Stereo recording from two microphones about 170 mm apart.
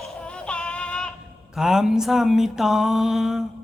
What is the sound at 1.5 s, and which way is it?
Mantra, 5° right (ahead or behind).